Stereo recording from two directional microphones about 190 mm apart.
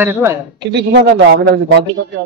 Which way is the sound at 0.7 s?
60° right (ahead or behind).